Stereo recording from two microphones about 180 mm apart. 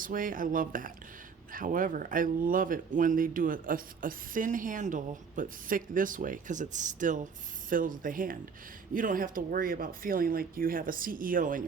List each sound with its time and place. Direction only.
0.0 s speech: 50° right (ahead or behind)